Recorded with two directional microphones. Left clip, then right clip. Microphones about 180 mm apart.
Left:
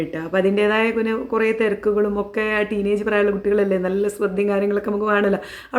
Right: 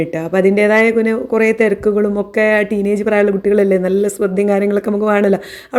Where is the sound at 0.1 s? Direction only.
35° right (ahead or behind).